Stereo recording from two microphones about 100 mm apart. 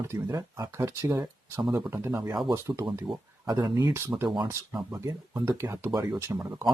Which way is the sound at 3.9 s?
25° right (ahead or behind).